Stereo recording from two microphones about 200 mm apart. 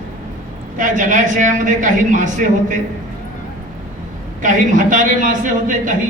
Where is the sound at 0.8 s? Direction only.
40° right (ahead or behind).